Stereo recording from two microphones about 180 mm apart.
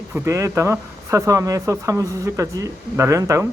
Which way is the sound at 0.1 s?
15° right (ahead or behind).